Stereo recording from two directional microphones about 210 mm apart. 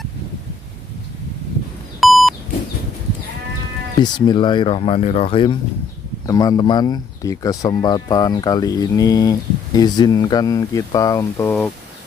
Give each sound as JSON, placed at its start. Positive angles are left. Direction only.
{"t": 2.0, "sound": "beep", "side_deg": 0}
{"t": 4.0, "sound": "speech", "side_deg": 20}